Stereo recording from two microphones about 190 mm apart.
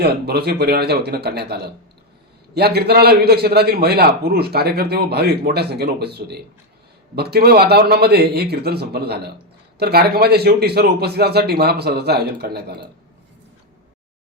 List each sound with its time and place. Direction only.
0.0 s a man's voice: 55° right (ahead or behind)